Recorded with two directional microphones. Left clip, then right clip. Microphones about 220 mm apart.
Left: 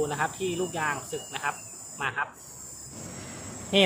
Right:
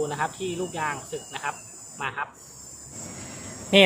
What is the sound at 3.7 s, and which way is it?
Speech, 20° right (ahead or behind).